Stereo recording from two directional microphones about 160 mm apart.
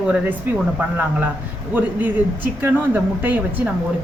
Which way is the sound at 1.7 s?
10° right (ahead or behind).